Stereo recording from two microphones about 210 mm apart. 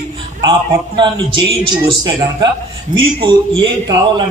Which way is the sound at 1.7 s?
20° right (ahead or behind).